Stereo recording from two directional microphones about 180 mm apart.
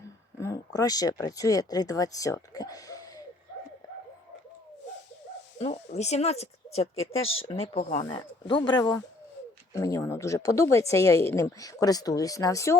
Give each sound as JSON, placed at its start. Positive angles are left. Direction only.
{"t": 0.3, "sound": "speech", "side_deg": 15}
{"t": 5.5, "sound": "speech", "side_deg": 35}
{"t": 8.0, "sound": "a woman's voice", "side_deg": 25}